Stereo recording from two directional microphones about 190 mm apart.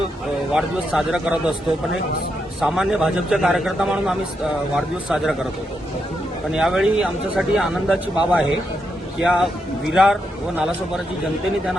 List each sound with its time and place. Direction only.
0.5 s speech: 5° right (ahead or behind)
2.6 s speech: 5° right (ahead or behind)
6.5 s speech: centre (ahead or behind)